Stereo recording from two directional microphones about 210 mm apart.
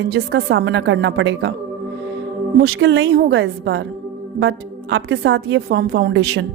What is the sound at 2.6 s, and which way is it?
A woman's voice, 55° right (ahead or behind).